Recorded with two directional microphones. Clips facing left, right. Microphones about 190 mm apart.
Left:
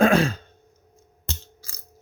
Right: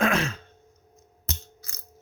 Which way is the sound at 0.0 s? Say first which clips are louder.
Left 7 dB; 35° left (ahead or behind).